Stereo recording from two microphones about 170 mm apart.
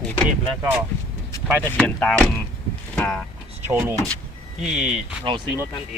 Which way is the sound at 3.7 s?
15° right (ahead or behind).